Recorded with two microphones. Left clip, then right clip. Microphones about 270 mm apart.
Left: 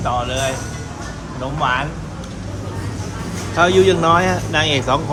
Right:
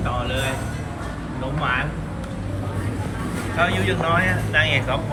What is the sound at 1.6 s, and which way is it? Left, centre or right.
Speech, centre.